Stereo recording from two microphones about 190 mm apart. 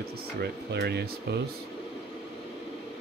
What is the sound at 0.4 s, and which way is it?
Speech, 60° right (ahead or behind).